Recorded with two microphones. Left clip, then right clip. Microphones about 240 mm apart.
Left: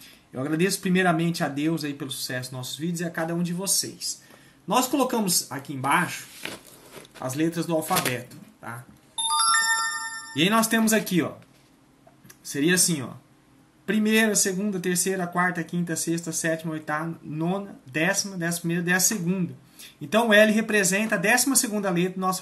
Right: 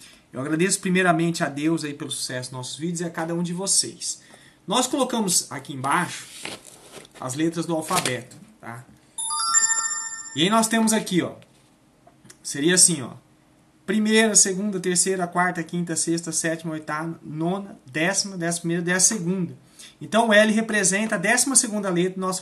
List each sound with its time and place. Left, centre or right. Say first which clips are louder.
0.0 s speech: right 1 dB; centre
9.3 s music: left 2 dB; left
10.3 s speech: right 2 dB; centre
12.4 s speech: right 3 dB; centre